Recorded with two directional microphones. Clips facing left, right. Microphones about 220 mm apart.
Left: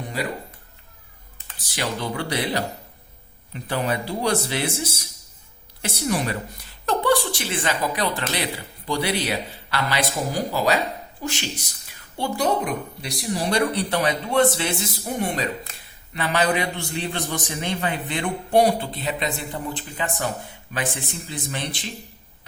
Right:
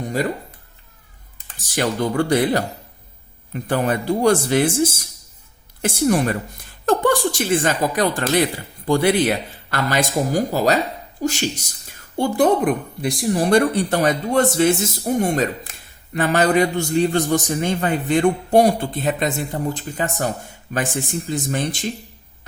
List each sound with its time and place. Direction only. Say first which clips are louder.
0.0 s music: right 6 dB; 45° right (ahead or behind)
1.5 s a woman's voice: right 7 dB; 45° right (ahead or behind)